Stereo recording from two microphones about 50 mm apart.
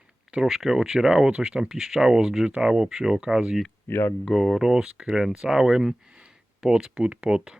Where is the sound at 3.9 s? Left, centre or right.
Left.